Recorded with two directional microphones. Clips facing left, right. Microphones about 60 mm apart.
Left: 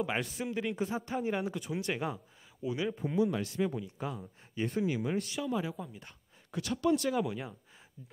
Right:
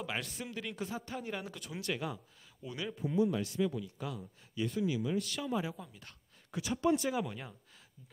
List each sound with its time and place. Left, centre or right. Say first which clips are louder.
0.2 s speech: left 7 dB; centre
0.9 s speech: left 7 dB; left
3.0 s speech: right 2 dB; left
3.7 s speech: left 2 dB; left
4.6 s speech: left 2 dB; left
5.4 s speech: left 2 dB; centre
7.2 s speech: left 6 dB; centre